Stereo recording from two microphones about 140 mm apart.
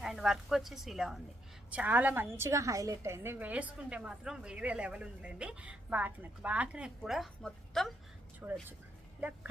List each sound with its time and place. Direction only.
0.0 s a woman's voice: 5° right (ahead or behind)
8.4 s a woman's voice: 10° right (ahead or behind)